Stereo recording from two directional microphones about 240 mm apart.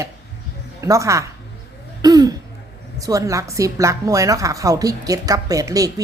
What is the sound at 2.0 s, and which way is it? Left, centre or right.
Throat clearing, centre.